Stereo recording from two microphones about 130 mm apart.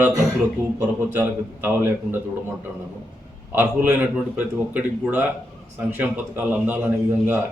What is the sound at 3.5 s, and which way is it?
A man's voice, 15° right (ahead or behind).